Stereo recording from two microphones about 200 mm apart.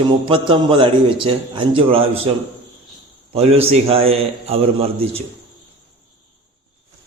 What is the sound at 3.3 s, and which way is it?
A man's voice, 30° right (ahead or behind).